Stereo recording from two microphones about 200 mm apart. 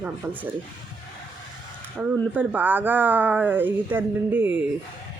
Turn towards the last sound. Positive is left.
turn(degrees=-10)  # may be behind; listen again after turning